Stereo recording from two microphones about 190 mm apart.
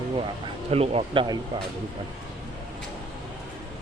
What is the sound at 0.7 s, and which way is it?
Speech, 30° right (ahead or behind).